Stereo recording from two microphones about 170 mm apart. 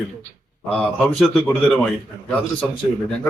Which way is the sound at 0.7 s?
5° left (ahead or behind).